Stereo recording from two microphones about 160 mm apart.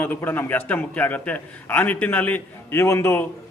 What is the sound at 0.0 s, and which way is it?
A man's voice, 10° left (ahead or behind).